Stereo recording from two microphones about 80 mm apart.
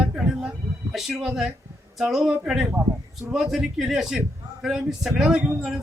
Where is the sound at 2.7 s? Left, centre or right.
Right.